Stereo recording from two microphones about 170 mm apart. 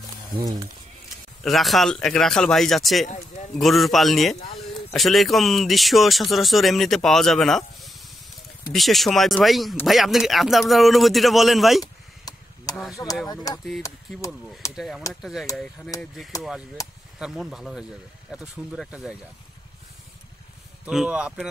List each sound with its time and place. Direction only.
0.4 s speech: 20° right (ahead or behind)
1.4 s speech: centre (ahead or behind)
3.1 s speech: 40° left (ahead or behind)
3.5 s speech: centre (ahead or behind)
11.8 s a sound: 20° left (ahead or behind)
12.9 s speech: 20° left (ahead or behind)
14.8 s speech: centre (ahead or behind)
17.2 s speech: centre (ahead or behind)
20.8 s speech: 5° right (ahead or behind)